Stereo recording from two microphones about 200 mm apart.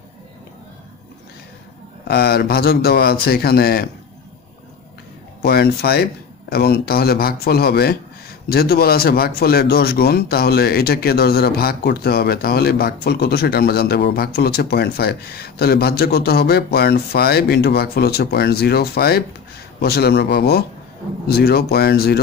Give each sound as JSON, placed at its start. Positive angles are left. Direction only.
{"t": 2.0, "sound": "speech", "side_deg": 50}
{"t": 5.4, "sound": "speech", "side_deg": 50}